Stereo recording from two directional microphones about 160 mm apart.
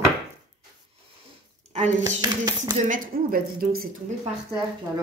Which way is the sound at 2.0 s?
20° right (ahead or behind).